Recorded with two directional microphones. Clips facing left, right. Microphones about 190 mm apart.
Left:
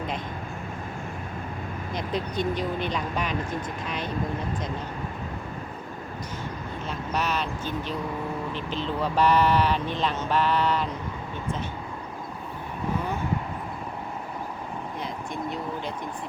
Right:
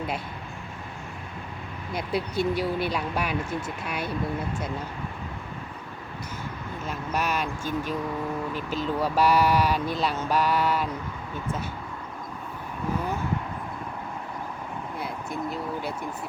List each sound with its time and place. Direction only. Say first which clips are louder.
1.9 s speech: right 2 dB; 10° right (ahead or behind)
6.8 s speech: even; 10° right (ahead or behind)
15.3 s speech: right 1 dB; 5° right (ahead or behind)